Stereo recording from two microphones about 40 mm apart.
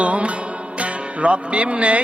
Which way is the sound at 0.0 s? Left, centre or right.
Right.